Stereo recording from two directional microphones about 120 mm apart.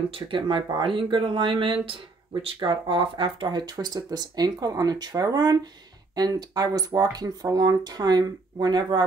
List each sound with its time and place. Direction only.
0.1 s speech: 45° right (ahead or behind)